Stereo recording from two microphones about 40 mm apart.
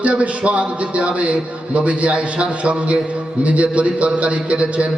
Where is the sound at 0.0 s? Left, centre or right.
Right.